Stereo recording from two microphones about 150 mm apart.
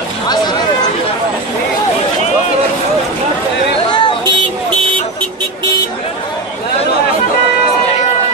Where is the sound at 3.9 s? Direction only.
30° left (ahead or behind).